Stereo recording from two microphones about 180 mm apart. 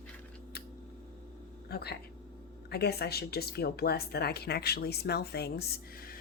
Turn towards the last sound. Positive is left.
turn(degrees=55)  # may be behind; listen again after turning